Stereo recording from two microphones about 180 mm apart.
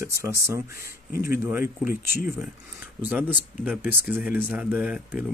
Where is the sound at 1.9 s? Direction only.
55° left (ahead or behind).